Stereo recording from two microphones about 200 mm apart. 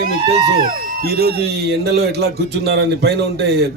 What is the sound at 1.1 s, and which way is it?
A man's voice, 50° right (ahead or behind).